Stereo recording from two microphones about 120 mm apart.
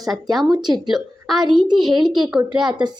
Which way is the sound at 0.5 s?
35° right (ahead or behind).